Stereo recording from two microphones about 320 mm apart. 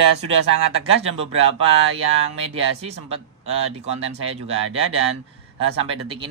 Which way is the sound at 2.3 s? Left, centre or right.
Centre.